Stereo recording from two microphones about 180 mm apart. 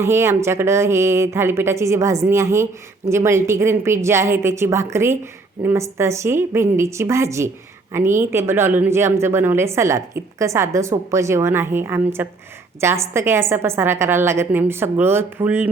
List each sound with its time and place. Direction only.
0.0 s a woman's voice: 15° right (ahead or behind)